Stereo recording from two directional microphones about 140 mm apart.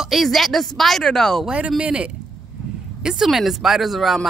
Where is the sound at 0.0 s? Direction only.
Centre (ahead or behind).